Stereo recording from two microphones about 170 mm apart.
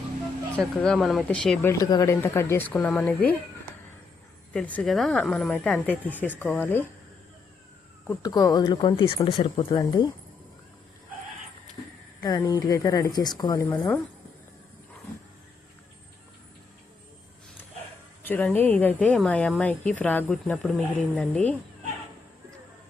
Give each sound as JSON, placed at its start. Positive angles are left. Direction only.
{"t": 0.6, "sound": "a woman's voice", "side_deg": 0}
{"t": 1.6, "sound": "speech", "side_deg": 20}
{"t": 4.5, "sound": "a woman's voice", "side_deg": 10}
{"t": 8.2, "sound": "speech", "side_deg": 20}
{"t": 12.2, "sound": "speech", "side_deg": 20}
{"t": 18.2, "sound": "speech", "side_deg": 10}